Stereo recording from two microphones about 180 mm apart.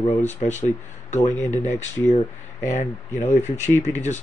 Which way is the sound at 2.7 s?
35° left (ahead or behind).